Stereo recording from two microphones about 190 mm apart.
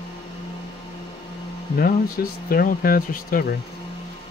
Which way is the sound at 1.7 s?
50° left (ahead or behind).